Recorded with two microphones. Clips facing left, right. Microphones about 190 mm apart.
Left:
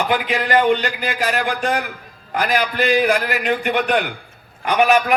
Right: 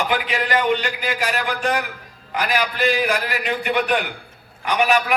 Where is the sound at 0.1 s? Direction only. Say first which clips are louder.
Left 3 dB; 50° left (ahead or behind).